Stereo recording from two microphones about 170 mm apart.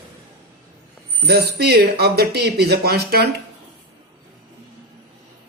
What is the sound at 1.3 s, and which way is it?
Speech, 70° right (ahead or behind).